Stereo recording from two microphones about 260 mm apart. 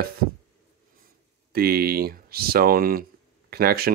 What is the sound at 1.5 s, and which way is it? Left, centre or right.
Speech, right.